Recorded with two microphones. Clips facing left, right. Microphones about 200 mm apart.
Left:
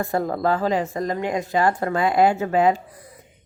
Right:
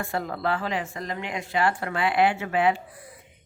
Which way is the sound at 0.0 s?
40° left (ahead or behind).